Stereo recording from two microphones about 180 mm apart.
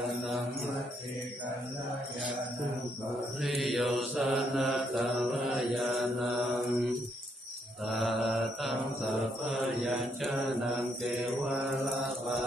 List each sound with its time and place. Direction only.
3.3 s mantra: centre (ahead or behind)
7.9 s mantra: centre (ahead or behind)